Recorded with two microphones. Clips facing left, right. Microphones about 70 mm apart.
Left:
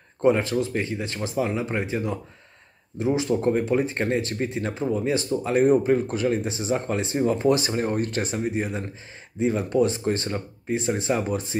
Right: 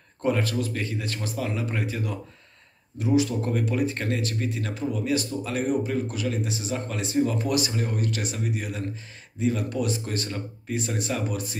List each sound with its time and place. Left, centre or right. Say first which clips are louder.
0.2 s speech: left 5 dB; left